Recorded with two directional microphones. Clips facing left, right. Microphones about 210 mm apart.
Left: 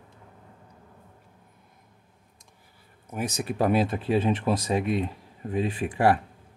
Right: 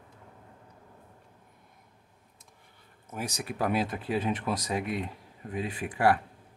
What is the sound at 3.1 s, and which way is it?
Speech, 20° left (ahead or behind).